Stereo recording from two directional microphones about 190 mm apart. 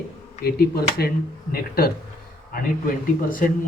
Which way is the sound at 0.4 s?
55° left (ahead or behind).